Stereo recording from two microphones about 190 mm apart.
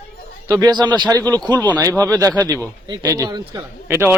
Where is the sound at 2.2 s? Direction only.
10° left (ahead or behind).